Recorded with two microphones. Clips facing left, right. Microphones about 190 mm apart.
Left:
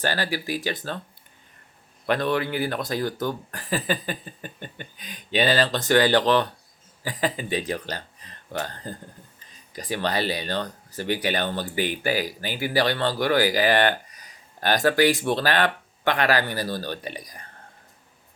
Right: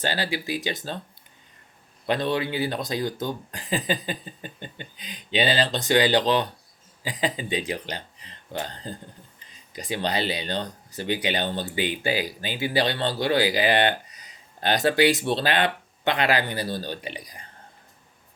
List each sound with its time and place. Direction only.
0.0 s speech: 15° right (ahead or behind)
2.0 s speech: 20° right (ahead or behind)
17.1 s speech: 45° left (ahead or behind)